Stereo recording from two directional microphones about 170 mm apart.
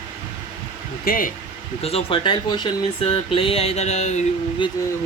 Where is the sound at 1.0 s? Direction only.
55° left (ahead or behind).